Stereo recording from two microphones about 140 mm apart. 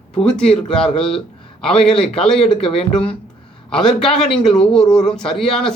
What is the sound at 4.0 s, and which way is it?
Speech, 5° left (ahead or behind).